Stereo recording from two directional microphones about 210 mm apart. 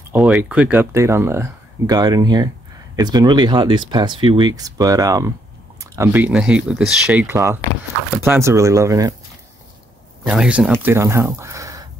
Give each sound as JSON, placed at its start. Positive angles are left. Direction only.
{"t": 0.1, "sound": "speech", "side_deg": -5}
{"t": 10.2, "sound": "speech", "side_deg": -5}